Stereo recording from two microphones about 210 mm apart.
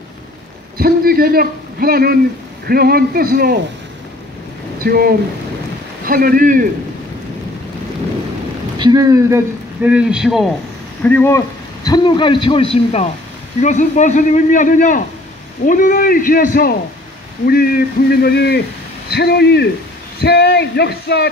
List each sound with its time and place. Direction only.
0.7 s a man's voice: 45° right (ahead or behind)
4.8 s a man's voice: 45° right (ahead or behind)
8.7 s speech: 20° right (ahead or behind); by 10.4 s 5° right (ahead or behind)
11.0 s a man's voice: 10° left (ahead or behind); by 16.7 s 40° left (ahead or behind)
17.5 s a sound: 45° left (ahead or behind)